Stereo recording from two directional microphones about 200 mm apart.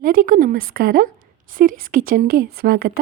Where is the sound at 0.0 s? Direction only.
45° right (ahead or behind).